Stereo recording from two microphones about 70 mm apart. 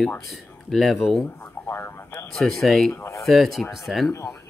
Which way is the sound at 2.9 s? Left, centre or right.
Left.